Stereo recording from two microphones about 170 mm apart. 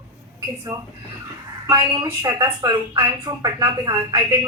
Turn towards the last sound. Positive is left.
turn(degrees=-20)  # may be behind; listen again after turning